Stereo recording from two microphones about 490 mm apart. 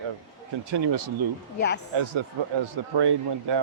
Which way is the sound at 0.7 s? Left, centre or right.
Right.